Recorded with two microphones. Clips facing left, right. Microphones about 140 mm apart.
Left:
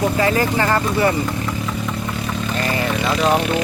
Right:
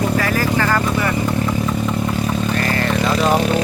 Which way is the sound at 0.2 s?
25° left (ahead or behind).